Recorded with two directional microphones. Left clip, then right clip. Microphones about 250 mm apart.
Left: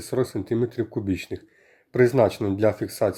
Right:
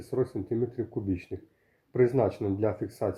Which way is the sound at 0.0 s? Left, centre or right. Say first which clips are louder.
Left 5 dB; left.